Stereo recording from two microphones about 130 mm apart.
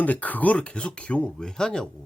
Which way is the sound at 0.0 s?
10° left (ahead or behind).